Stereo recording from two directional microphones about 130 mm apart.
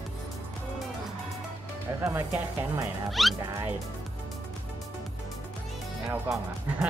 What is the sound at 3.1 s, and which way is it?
Speech, centre (ahead or behind).